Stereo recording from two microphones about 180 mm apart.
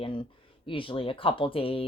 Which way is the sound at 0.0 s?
30° left (ahead or behind).